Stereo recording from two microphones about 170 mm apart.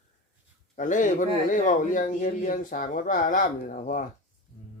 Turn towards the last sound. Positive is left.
turn(degrees=50)  # may be behind; listen again after turning